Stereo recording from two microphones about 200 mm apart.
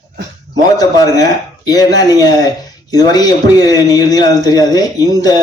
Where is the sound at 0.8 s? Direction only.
15° left (ahead or behind).